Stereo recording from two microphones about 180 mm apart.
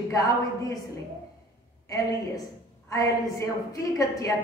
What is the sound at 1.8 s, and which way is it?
A woman's voice, 20° left (ahead or behind).